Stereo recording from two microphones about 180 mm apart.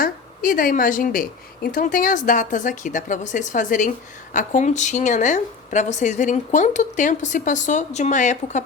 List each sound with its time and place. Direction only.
0.0 s a woman's voice: 50° left (ahead or behind)